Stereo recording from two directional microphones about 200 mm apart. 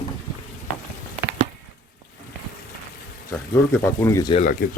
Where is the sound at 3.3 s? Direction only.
15° left (ahead or behind).